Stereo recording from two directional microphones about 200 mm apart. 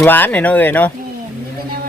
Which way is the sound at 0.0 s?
10° left (ahead or behind).